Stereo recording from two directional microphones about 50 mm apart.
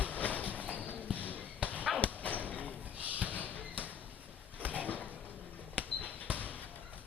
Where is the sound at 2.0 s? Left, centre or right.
Left.